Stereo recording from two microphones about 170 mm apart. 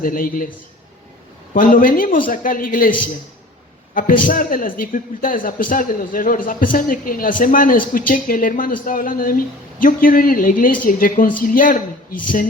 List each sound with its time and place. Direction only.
0.0 s speech: 55° left (ahead or behind)
1.5 s speech: 55° left (ahead or behind)
3.9 s a man's voice: 55° left (ahead or behind)